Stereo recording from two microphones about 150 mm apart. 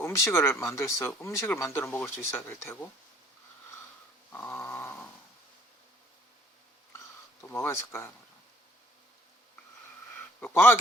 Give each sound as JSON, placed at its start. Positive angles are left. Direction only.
{"t": 0.0, "sound": "speech", "side_deg": 15}
{"t": 4.3, "sound": "dog", "side_deg": 15}
{"t": 7.4, "sound": "speech", "side_deg": 15}
{"t": 10.4, "sound": "speech", "side_deg": 15}